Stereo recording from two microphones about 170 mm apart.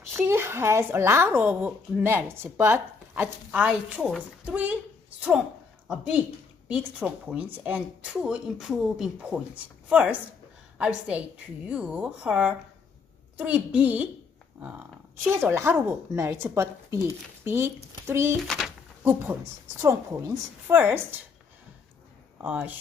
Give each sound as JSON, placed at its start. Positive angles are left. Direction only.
{"t": 0.1, "sound": "speech", "side_deg": -15}
{"t": 5.9, "sound": "a woman's voice", "side_deg": -5}
{"t": 19.8, "sound": "speech", "side_deg": -15}
{"t": 22.4, "sound": "speech", "side_deg": -10}